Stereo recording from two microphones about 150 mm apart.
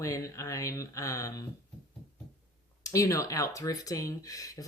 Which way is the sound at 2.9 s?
20° left (ahead or behind).